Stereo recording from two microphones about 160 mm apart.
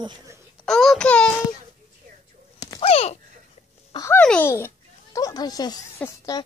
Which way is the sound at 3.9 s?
20° left (ahead or behind).